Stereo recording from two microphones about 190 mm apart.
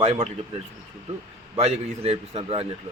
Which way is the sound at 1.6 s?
35° right (ahead or behind).